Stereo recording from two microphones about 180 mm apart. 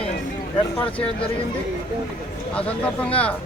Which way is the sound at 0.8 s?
30° left (ahead or behind).